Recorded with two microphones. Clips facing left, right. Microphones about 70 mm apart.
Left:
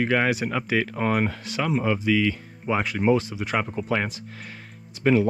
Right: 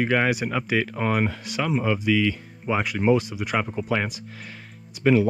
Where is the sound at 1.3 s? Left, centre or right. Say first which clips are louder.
Even; left.